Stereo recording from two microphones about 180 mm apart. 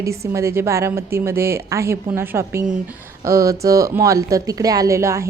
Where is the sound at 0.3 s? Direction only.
15° right (ahead or behind).